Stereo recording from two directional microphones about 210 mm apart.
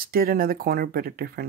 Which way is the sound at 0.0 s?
45° right (ahead or behind).